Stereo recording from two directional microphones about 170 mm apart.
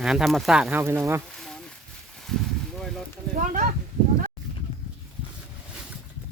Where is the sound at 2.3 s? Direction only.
Centre (ahead or behind).